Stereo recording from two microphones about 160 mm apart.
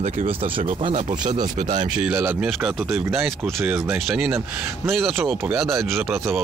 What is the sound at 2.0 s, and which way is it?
Speech, 10° right (ahead or behind).